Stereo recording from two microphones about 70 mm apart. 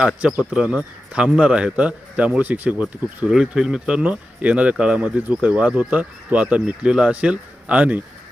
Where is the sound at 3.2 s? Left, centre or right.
Centre.